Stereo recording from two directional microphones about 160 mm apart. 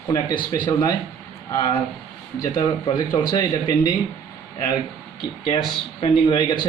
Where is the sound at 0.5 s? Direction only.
25° left (ahead or behind).